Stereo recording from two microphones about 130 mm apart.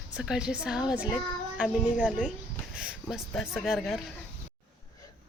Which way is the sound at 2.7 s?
5° right (ahead or behind).